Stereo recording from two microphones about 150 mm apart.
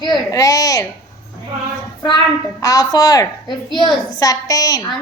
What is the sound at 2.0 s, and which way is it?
A woman's voice, 25° left (ahead or behind).